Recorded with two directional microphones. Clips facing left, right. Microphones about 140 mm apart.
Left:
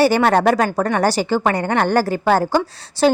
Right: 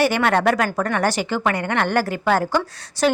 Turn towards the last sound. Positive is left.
turn(degrees=30)  # may be behind; listen again after turning